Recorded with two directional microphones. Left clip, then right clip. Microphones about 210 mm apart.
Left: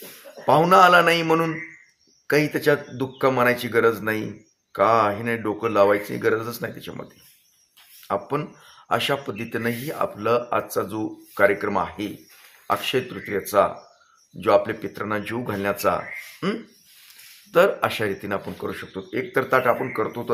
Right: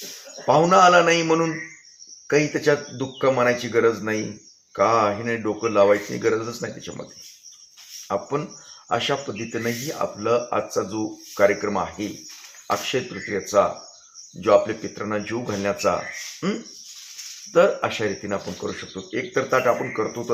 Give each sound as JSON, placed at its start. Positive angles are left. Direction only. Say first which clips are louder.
{"t": 0.4, "sound": "speech", "louder": "even", "side_deg": 10}
{"t": 8.0, "sound": "speech", "louder": "even", "side_deg": 5}